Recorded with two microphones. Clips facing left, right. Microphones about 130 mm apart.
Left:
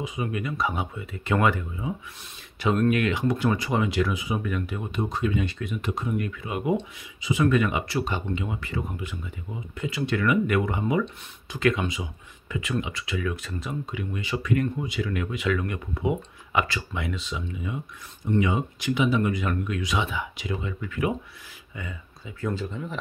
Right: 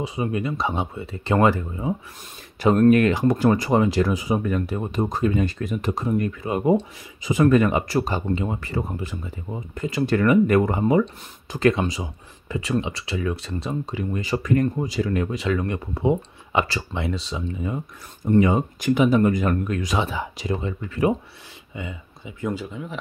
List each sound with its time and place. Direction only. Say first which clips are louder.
0.0 s speech: right 5 dB; 30° right (ahead or behind)
21.7 s speech: right 4 dB; 20° right (ahead or behind)